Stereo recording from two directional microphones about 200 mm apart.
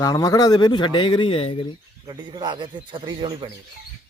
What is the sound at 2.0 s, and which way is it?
A man's voice, 25° right (ahead or behind).